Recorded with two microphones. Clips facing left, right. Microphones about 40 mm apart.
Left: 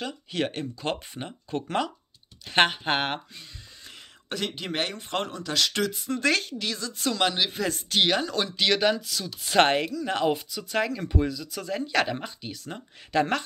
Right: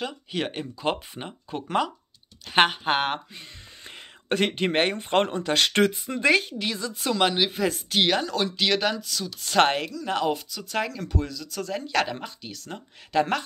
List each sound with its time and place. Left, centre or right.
0.0 s speech: centre
3.3 s speech: right
6.0 s speech: centre